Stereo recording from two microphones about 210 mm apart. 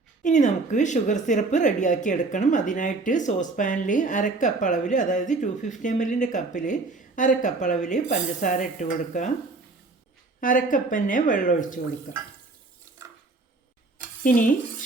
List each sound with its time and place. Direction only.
0.2 s speech: 35° left (ahead or behind)
10.4 s speech: 40° left (ahead or behind)
14.3 s speech: 40° left (ahead or behind)